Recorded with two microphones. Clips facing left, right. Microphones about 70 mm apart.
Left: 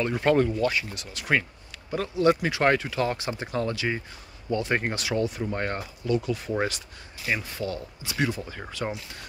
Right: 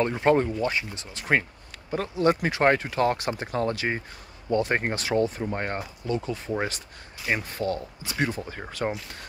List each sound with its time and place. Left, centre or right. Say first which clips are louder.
0.1 s speech: even; right
5.4 s speech: even; right
8.8 s speech: right 3 dB; right